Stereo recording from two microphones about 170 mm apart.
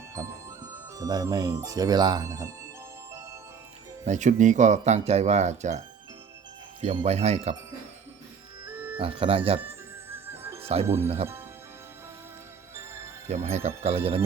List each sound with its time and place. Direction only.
0.2 s speech: 20° right (ahead or behind)
4.0 s speech: 45° right (ahead or behind)
7.0 s speech: 40° right (ahead or behind)
8.6 s music: 10° right (ahead or behind)
9.0 s speech: 30° right (ahead or behind)
10.1 s music: 15° right (ahead or behind)
10.6 s music: 35° right (ahead or behind)
10.8 s speech: 15° right (ahead or behind)
13.2 s speech: 40° right (ahead or behind)